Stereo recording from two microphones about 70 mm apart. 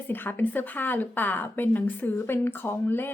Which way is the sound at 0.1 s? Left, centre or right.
Left.